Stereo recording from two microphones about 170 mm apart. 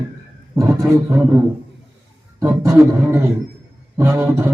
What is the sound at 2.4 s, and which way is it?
Speech, 15° right (ahead or behind).